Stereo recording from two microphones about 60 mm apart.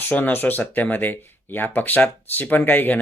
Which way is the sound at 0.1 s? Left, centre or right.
Left.